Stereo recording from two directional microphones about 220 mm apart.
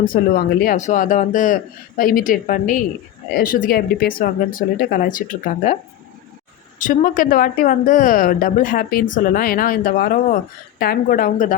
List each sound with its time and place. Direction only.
0.0 s speech: 40° left (ahead or behind)
6.7 s speech: 35° left (ahead or behind)